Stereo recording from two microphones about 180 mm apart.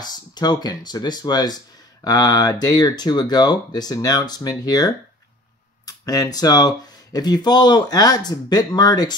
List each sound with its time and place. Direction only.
0.0 s speech: 20° left (ahead or behind)